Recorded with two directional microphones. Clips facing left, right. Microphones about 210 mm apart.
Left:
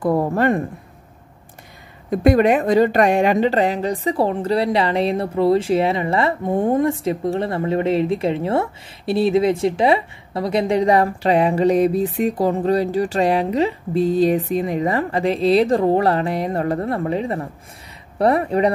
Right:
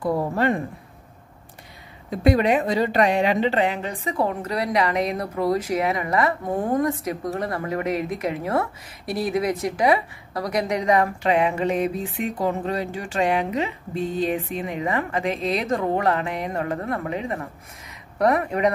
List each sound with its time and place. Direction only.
0.0 s a woman's voice: 50° left (ahead or behind)
2.0 s a woman's voice: 50° left (ahead or behind); by 18.7 s 30° left (ahead or behind)